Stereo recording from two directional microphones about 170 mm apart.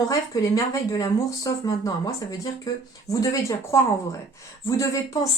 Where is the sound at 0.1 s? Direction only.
20° left (ahead or behind).